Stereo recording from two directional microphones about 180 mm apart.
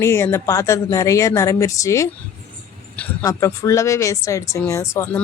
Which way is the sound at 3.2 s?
15° left (ahead or behind).